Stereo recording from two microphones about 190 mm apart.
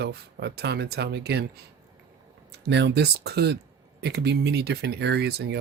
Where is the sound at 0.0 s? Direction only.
60° right (ahead or behind).